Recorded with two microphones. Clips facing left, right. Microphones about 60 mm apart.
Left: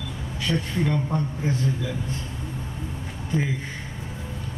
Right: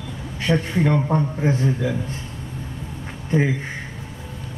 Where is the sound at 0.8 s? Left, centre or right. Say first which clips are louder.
Right 5 dB; right.